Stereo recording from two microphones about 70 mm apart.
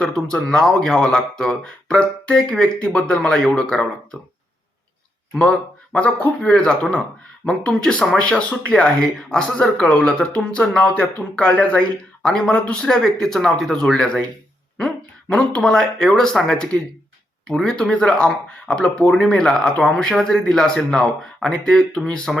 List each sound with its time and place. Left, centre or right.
0.3 s speech: centre
5.4 s speech: centre